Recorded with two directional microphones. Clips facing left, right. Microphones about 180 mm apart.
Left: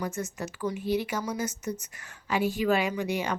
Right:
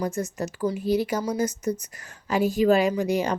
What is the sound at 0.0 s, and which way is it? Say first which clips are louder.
A woman's voice: right 5 dB; 35° right (ahead or behind).